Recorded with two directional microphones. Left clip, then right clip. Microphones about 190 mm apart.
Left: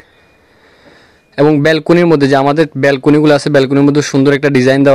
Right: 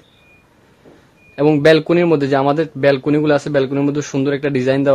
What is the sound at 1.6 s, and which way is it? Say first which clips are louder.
Speech: left 2 dB; 40° left (ahead or behind).